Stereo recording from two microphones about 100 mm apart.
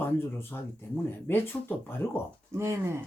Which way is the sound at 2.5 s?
30° right (ahead or behind).